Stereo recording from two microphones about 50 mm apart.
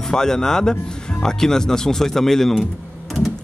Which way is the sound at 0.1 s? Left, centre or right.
Centre.